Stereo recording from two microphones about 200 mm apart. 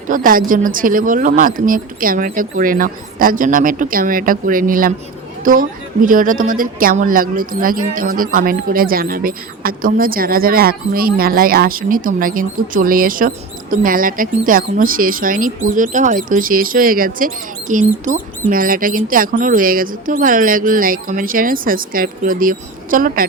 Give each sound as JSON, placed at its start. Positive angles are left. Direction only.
{"t": 0.1, "sound": "a woman's voice", "side_deg": -45}